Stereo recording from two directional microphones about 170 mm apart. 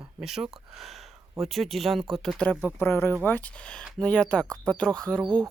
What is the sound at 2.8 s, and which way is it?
Speech, 15° left (ahead or behind).